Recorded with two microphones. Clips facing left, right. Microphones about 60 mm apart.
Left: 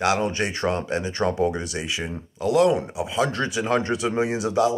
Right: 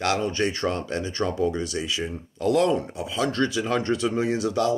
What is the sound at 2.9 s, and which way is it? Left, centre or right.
Speech, centre.